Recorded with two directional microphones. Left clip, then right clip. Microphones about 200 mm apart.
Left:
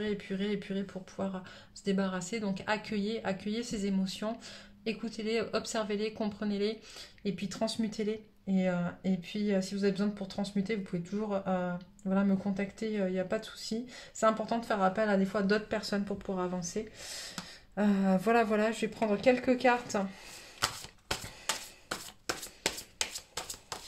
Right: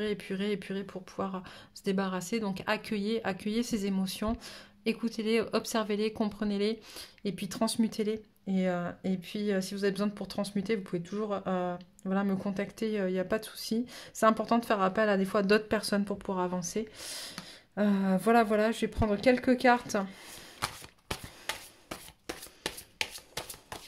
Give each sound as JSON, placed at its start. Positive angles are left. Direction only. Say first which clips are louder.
{"t": 0.0, "sound": "speech", "louder": "right 2 dB", "side_deg": -50}